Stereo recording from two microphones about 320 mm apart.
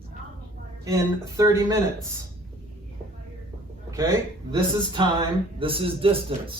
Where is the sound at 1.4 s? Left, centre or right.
Centre.